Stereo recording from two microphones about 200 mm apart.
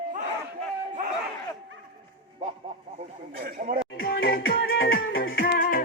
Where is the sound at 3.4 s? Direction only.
45° right (ahead or behind).